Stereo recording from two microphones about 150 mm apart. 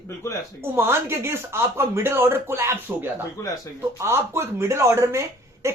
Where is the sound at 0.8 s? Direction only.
15° right (ahead or behind).